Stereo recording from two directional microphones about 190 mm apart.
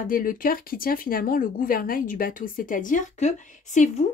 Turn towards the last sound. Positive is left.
turn(degrees=35)  # may be behind; listen again after turning